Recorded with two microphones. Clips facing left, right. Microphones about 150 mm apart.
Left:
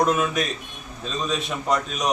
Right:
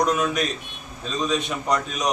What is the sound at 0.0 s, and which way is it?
A man's voice, 5° left (ahead or behind).